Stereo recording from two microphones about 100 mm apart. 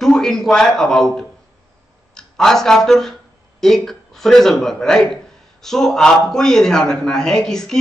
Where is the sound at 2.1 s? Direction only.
5° left (ahead or behind).